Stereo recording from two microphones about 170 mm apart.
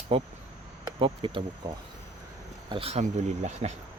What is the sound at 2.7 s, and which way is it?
Speech, 35° right (ahead or behind).